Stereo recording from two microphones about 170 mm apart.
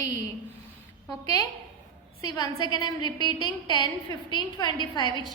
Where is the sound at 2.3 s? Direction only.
25° left (ahead or behind).